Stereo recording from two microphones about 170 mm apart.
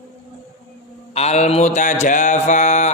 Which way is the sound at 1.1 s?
40° left (ahead or behind).